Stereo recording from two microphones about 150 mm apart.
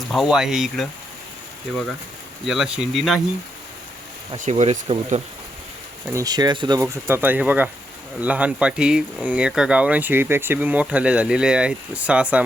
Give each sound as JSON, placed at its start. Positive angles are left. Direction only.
{"t": 0.1, "sound": "speech", "side_deg": 0}
{"t": 4.4, "sound": "speech", "side_deg": -55}
{"t": 6.1, "sound": "speech", "side_deg": -25}